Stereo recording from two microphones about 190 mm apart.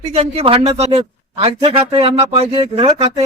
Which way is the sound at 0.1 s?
35° right (ahead or behind).